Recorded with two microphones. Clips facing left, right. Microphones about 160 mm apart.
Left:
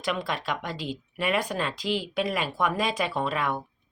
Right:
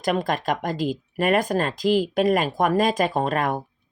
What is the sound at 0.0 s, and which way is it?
Speech, 45° right (ahead or behind).